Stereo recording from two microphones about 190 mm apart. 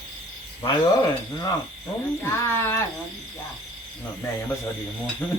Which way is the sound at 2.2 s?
10° left (ahead or behind).